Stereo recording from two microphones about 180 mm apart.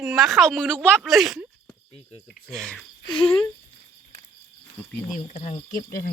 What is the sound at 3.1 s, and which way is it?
Speech, 30° left (ahead or behind).